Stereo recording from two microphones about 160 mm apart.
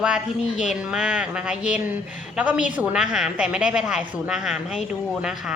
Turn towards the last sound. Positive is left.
turn(degrees=-5)  # may be behind; listen again after turning